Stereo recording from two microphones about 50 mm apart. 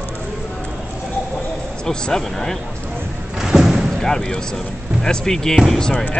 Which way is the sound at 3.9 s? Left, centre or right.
Centre.